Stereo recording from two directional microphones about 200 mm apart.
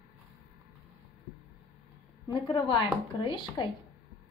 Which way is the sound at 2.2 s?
20° left (ahead or behind).